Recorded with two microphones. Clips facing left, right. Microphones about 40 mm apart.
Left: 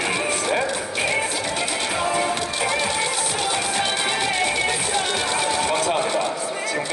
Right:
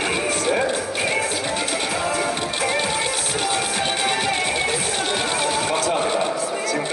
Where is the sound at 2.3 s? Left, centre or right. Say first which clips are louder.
Right 1 dB; right.